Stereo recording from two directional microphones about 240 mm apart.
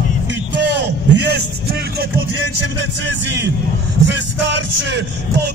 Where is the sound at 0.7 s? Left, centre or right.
Right.